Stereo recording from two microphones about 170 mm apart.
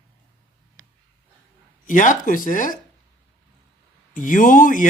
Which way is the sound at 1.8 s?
50° left (ahead or behind).